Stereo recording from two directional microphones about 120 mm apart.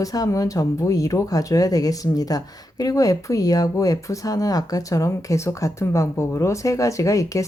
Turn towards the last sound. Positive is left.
turn(degrees=25)  # may be behind; listen again after turning